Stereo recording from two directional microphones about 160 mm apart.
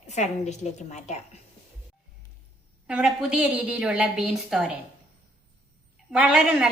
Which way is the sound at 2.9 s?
5° right (ahead or behind).